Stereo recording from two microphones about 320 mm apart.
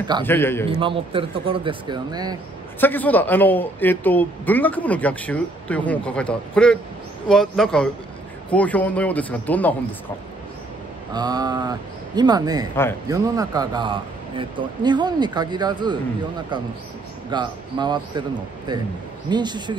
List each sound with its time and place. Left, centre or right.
0.2 s a man's voice: centre
0.7 s speech: centre
2.8 s a man's voice: centre
11.1 s speech: centre
17.3 s speech: centre